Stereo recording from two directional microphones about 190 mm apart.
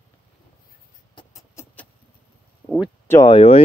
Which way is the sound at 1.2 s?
15° left (ahead or behind).